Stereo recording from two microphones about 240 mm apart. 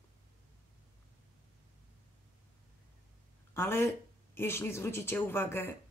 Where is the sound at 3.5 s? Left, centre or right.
Centre.